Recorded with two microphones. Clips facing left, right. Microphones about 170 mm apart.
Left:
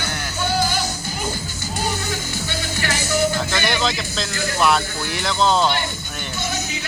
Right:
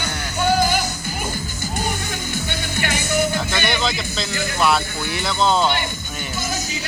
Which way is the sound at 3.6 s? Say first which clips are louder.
Even; centre (ahead or behind).